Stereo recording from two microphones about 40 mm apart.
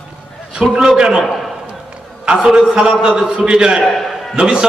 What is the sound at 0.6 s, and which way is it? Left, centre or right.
Speech, right.